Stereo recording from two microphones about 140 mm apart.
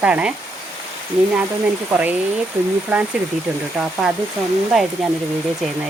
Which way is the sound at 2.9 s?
10° right (ahead or behind).